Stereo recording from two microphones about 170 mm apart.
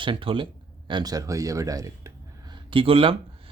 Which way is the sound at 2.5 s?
30° right (ahead or behind).